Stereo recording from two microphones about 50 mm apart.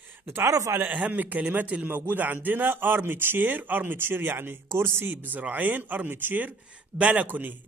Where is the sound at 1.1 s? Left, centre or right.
Right.